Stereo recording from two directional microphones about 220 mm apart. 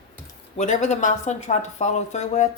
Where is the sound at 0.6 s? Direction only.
35° left (ahead or behind).